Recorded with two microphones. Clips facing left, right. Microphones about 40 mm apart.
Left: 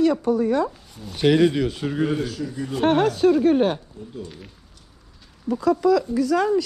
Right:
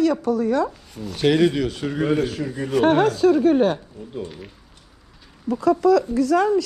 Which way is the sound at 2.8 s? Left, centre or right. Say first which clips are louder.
Right 2 dB; centre.